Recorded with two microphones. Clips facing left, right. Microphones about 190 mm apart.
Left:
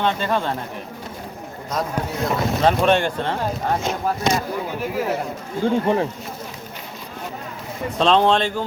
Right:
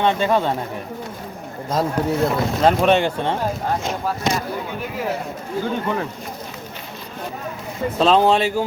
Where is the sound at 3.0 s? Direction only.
15° right (ahead or behind).